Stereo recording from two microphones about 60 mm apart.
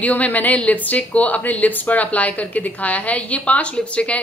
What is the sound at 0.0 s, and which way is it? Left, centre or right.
Speech, left.